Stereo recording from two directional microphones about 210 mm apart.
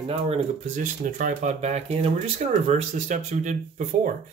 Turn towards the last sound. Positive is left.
turn(degrees=-35)  # may be behind; listen again after turning